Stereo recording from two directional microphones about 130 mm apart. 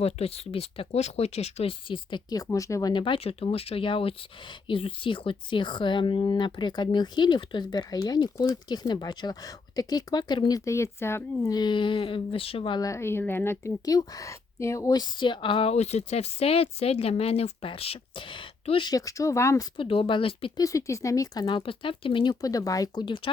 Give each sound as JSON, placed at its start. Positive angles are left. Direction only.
{"t": 0.0, "sound": "speech", "side_deg": 50}
{"t": 2.9, "sound": "speech", "side_deg": 40}
{"t": 10.7, "sound": "speech", "side_deg": 20}
{"t": 11.5, "sound": "speech", "side_deg": 35}
{"t": 12.8, "sound": "speech", "side_deg": 20}
{"t": 18.9, "sound": "speech", "side_deg": 25}
{"t": 19.7, "sound": "speech", "side_deg": 40}
{"t": 20.6, "sound": "speech", "side_deg": 25}
{"t": 21.4, "sound": "speech", "side_deg": 40}